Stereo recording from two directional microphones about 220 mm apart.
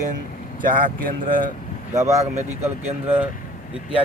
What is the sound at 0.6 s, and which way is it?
Speech, 40° right (ahead or behind).